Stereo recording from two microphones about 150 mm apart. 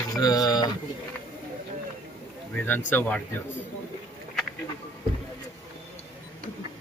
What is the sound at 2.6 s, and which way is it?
Speech, 10° left (ahead or behind).